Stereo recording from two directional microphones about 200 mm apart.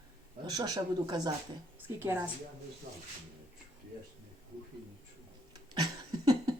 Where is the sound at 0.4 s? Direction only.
20° right (ahead or behind).